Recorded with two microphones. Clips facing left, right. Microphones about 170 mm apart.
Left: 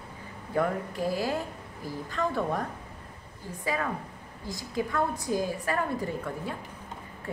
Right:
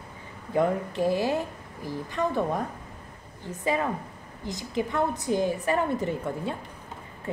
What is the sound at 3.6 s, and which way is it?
A woman's voice, 20° right (ahead or behind).